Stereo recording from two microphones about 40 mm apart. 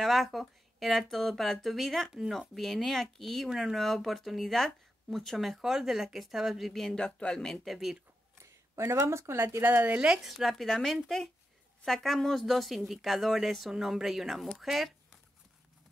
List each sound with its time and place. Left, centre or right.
0.0 s speech: centre
3.5 s speech: centre
5.6 s speech: centre
6.6 s speech: centre
7.0 s speech: left
7.6 s speech: centre
9.0 s speech: right
9.8 s speech: right
10.2 s speech: centre
10.7 s speech: centre